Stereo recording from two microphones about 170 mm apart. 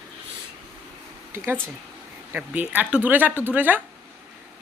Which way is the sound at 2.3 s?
10° right (ahead or behind).